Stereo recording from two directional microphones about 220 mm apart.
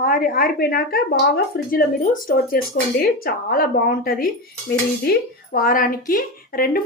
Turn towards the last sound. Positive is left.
turn(degrees=40)  # may be behind; listen again after turning